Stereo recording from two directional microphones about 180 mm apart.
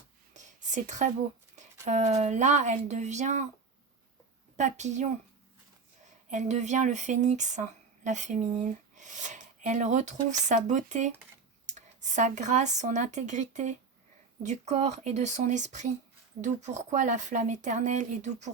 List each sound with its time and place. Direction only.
0.3 s a sound: 40° right (ahead or behind)
1.5 s speech: 40° right (ahead or behind)
4.5 s speech: 40° right (ahead or behind)
6.3 s speech: 40° right (ahead or behind)